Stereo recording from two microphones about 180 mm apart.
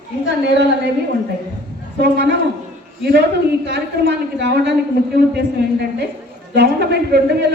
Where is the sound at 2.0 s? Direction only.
70° right (ahead or behind).